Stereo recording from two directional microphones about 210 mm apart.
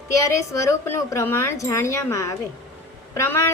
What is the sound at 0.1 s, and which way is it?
A woman's voice, 15° left (ahead or behind).